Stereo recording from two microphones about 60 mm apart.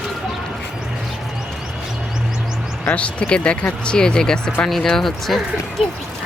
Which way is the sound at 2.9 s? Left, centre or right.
Left.